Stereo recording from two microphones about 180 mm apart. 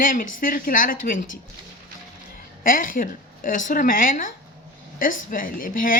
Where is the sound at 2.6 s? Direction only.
50° left (ahead or behind).